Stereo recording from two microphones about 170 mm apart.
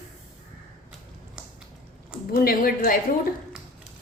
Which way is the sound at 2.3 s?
60° left (ahead or behind).